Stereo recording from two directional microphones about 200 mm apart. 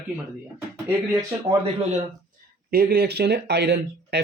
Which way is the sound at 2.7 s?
50° right (ahead or behind).